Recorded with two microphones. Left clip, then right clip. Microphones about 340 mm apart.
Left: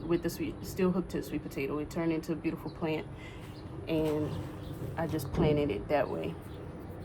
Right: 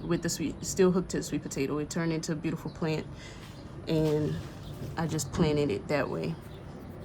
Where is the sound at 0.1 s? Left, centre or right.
Right.